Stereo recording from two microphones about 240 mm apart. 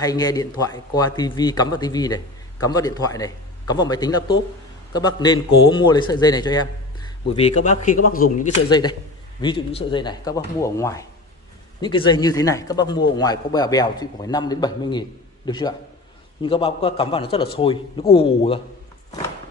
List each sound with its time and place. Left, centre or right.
0.0 s speech: centre
7.3 s speech: left
8.6 s a man's voice: centre